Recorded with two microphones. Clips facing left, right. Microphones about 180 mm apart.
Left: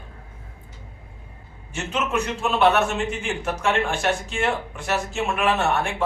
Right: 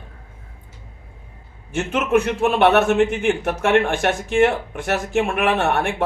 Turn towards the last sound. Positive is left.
turn(degrees=-55)  # may be behind; listen again after turning